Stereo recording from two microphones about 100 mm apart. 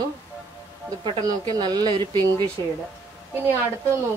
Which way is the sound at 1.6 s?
45° right (ahead or behind).